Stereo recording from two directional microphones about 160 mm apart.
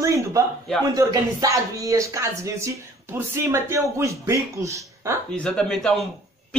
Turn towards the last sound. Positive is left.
turn(degrees=5)  # may be behind; listen again after turning